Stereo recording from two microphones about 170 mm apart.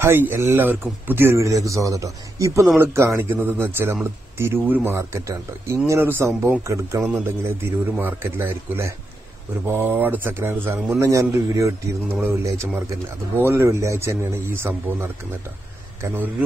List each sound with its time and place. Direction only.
0.0 s speech: 15° right (ahead or behind)
7.0 s a man's voice: 5° right (ahead or behind)
7.2 s speech: 15° right (ahead or behind)
13.4 s speech: 15° right (ahead or behind)